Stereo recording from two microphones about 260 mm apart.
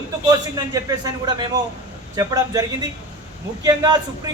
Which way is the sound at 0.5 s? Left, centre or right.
Centre.